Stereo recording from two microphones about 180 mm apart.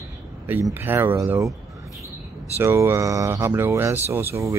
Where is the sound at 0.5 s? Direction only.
10° right (ahead or behind).